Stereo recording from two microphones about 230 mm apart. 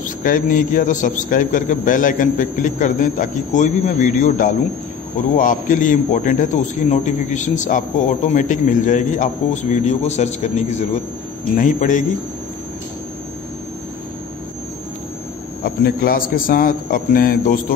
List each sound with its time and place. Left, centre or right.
0.0 s a man's voice: left
15.6 s a man's voice: left